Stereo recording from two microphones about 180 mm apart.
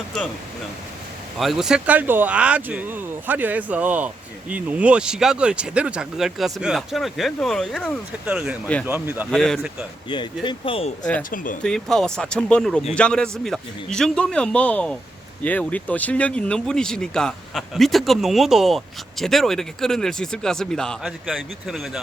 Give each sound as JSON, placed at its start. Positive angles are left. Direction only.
{"t": 1.4, "sound": "speech", "side_deg": 0}
{"t": 9.3, "sound": "speech", "side_deg": 5}
{"t": 10.1, "sound": "speech", "side_deg": 25}
{"t": 11.2, "sound": "speech", "side_deg": 50}
{"t": 11.6, "sound": "speech", "side_deg": 5}